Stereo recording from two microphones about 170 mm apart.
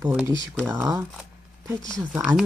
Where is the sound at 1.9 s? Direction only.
Centre (ahead or behind).